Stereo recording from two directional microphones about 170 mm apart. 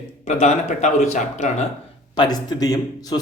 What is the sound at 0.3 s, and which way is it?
Speech, 40° left (ahead or behind).